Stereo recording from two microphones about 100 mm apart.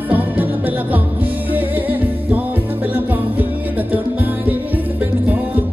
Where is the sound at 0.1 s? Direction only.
15° right (ahead or behind).